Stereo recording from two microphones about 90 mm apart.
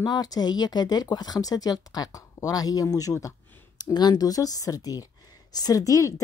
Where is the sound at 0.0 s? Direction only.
45° left (ahead or behind).